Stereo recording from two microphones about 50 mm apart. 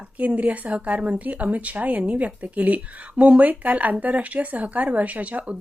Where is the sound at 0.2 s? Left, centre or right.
Right.